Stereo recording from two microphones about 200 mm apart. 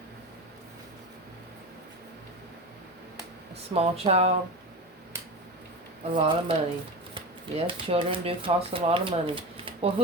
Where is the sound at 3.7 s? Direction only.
30° right (ahead or behind).